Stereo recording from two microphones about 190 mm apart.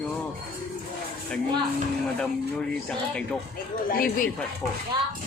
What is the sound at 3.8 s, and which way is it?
Speech, 50° left (ahead or behind).